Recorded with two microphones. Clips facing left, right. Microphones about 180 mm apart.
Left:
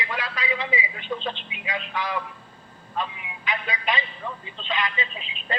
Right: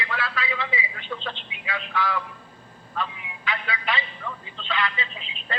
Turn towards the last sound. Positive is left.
turn(degrees=15)  # may be behind; listen again after turning